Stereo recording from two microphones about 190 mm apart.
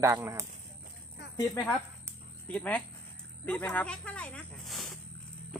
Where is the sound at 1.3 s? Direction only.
15° left (ahead or behind).